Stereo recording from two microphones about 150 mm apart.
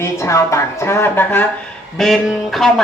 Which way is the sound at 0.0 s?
20° left (ahead or behind).